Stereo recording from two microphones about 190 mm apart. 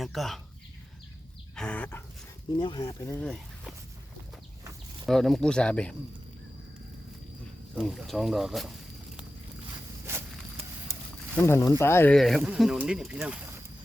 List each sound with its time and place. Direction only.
0.0 s speech: centre (ahead or behind)
1.5 s chicken: 5° left (ahead or behind)
2.6 s speech: 20° left (ahead or behind)
5.0 s speech: centre (ahead or behind)
7.8 s speech: centre (ahead or behind)
11.3 s chicken: 15° left (ahead or behind)
11.8 s speech: 10° left (ahead or behind); by 13.6 s 10° right (ahead or behind)